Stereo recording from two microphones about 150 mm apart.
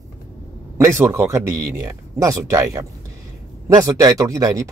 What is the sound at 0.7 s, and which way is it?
Speech, 20° right (ahead or behind).